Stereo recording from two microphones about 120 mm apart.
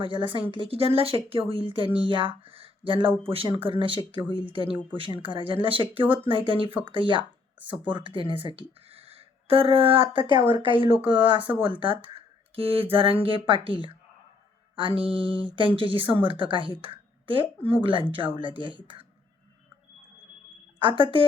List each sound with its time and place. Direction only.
0.0 s speech: 45° right (ahead or behind)
20.8 s speech: 45° right (ahead or behind)